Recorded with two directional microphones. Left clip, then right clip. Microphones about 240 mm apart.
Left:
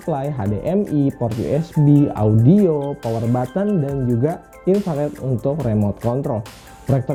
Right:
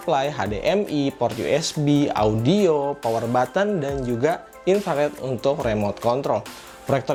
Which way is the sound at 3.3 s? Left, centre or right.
Centre.